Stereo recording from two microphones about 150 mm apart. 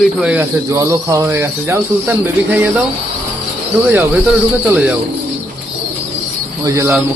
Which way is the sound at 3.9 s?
10° right (ahead or behind).